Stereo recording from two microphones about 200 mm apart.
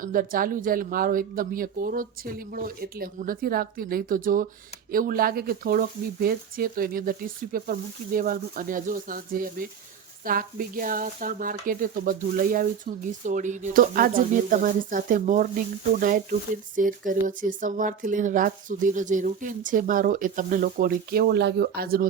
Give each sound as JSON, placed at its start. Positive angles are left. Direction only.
{"t": 0.0, "sound": "speech", "side_deg": -45}